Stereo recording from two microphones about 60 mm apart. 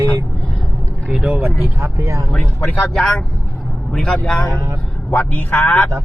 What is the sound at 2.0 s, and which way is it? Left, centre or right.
Speech, right.